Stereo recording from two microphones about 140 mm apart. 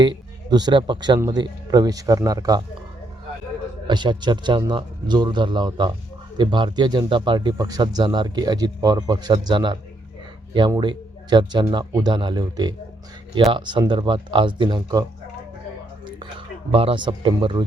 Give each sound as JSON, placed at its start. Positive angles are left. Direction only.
{"t": 0.5, "sound": "speech", "side_deg": -30}
{"t": 3.8, "sound": "speech", "side_deg": -35}
{"t": 10.8, "sound": "speech", "side_deg": -35}
{"t": 16.7, "sound": "speech", "side_deg": -40}